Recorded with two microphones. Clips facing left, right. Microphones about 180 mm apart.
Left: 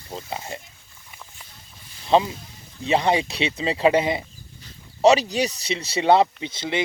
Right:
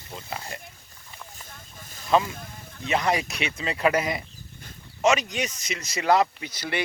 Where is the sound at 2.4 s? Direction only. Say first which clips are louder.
Right 4 dB; 55° right (ahead or behind).